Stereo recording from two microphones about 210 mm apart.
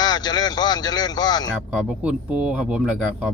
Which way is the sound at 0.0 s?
20° left (ahead or behind).